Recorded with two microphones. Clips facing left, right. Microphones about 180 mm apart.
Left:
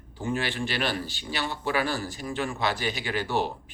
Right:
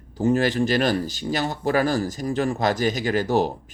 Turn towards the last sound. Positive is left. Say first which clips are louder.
# right 7 dB
turn(degrees=-40)  # may be behind; listen again after turning